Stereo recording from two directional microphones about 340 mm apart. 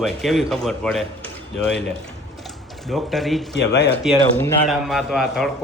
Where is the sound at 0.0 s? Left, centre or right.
Centre.